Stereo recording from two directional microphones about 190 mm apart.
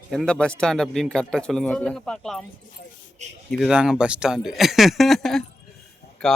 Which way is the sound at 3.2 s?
40° right (ahead or behind).